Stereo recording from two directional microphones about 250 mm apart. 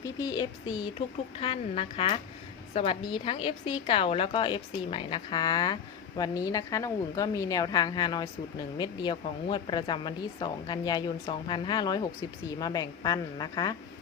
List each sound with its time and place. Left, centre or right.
0.0 s a woman's voice: centre